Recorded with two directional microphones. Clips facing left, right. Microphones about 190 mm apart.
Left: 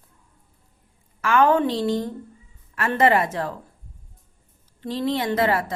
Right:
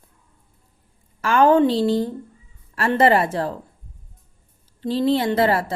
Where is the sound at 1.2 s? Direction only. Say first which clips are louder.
Right 3 dB; 35° right (ahead or behind).